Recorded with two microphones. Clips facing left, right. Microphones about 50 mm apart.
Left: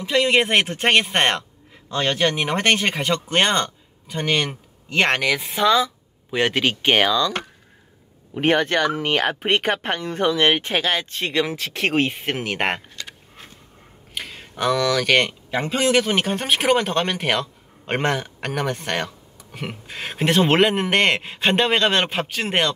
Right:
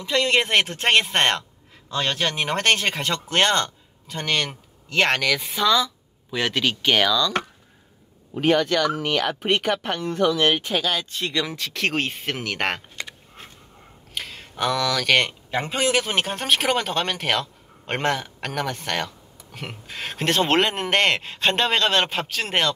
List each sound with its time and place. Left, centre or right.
0.0 s speech: centre; by 7.3 s left
8.4 s speech: left
11.2 s speech: centre
14.1 s speech: centre